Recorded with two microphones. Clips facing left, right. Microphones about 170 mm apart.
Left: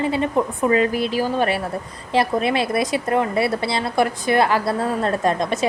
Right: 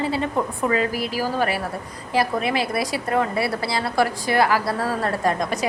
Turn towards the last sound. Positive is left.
turn(degrees=25)  # may be behind; listen again after turning